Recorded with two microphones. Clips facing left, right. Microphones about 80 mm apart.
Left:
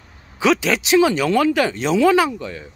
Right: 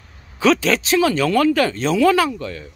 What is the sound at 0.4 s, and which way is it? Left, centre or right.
Speech, centre.